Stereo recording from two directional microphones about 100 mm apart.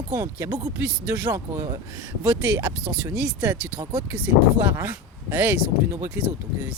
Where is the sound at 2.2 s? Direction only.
20° right (ahead or behind).